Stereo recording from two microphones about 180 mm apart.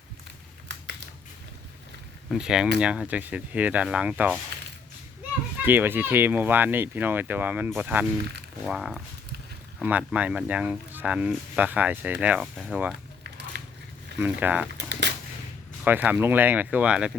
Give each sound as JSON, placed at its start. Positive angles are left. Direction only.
{"t": 0.7, "sound": "typing", "side_deg": -75}
{"t": 2.3, "sound": "speech", "side_deg": -5}
{"t": 5.6, "sound": "speech", "side_deg": -10}
{"t": 13.5, "sound": "biting", "side_deg": -65}
{"t": 14.2, "sound": "speech", "side_deg": -10}
{"t": 15.8, "sound": "speech", "side_deg": -10}